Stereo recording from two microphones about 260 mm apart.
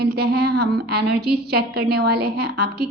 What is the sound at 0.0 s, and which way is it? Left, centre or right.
A woman's voice, right.